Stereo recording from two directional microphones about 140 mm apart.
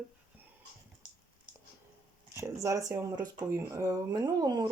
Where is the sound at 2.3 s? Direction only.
20° right (ahead or behind).